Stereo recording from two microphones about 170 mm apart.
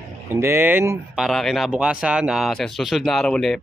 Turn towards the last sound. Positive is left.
turn(degrees=0)  # may be behind; listen again after turning